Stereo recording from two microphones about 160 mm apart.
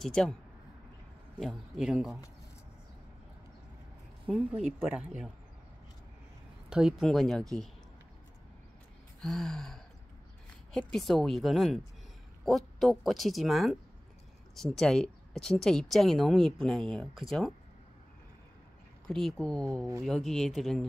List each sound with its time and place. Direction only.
0.0 s speech: 5° left (ahead or behind)
1.4 s speech: centre (ahead or behind)
4.3 s speech: 5° right (ahead or behind)
6.7 s speech: 5° right (ahead or behind)
9.2 s speech: centre (ahead or behind)
19.0 s speech: centre (ahead or behind)